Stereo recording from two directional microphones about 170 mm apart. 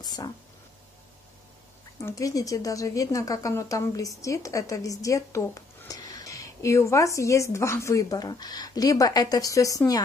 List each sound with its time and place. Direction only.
0.0 s speech: 25° left (ahead or behind)
2.0 s speech: 20° left (ahead or behind)